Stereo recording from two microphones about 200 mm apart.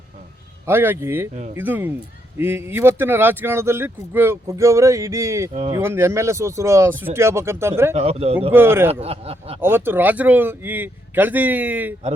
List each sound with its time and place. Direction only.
0.7 s speech: 10° right (ahead or behind)
7.9 s speech: 30° right (ahead or behind)
8.5 s speech: 10° right (ahead or behind)
8.9 s speech: 30° right (ahead or behind)
9.6 s speech: 10° right (ahead or behind)